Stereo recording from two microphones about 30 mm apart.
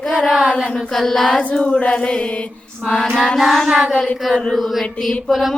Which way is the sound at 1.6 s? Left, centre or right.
Left.